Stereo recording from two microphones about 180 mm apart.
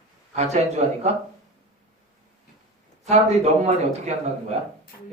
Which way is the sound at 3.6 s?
40° right (ahead or behind).